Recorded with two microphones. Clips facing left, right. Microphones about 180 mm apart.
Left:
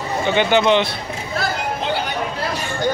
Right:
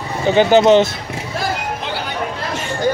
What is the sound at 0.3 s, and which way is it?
Speech, 40° right (ahead or behind).